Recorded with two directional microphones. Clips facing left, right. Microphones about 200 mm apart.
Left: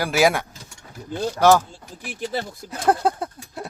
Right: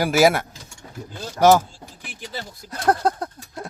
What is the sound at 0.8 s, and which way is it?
Vehicle, 30° right (ahead or behind).